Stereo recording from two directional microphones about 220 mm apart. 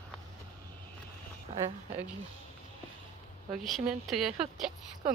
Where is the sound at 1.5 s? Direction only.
30° right (ahead or behind).